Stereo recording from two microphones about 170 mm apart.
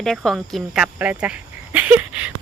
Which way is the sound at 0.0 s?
Centre (ahead or behind).